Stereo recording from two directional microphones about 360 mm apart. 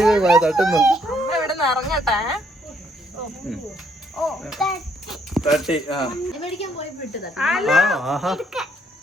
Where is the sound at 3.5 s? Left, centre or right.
Centre.